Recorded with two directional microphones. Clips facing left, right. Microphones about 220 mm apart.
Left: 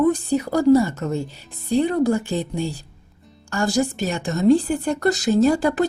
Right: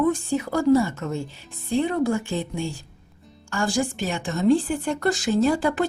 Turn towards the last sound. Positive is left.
turn(degrees=40)  # may be behind; listen again after turning